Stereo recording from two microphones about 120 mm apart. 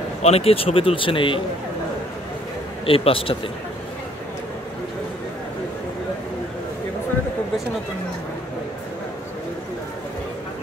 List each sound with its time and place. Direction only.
0.2 s a man's voice: 55° left (ahead or behind)
2.8 s a man's voice: 50° left (ahead or behind)